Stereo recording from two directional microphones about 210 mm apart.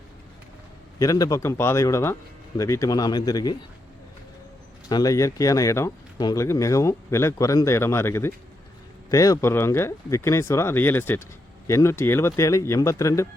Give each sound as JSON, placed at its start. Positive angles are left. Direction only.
{"t": 0.9, "sound": "speech", "side_deg": 15}
{"t": 4.9, "sound": "speech", "side_deg": 15}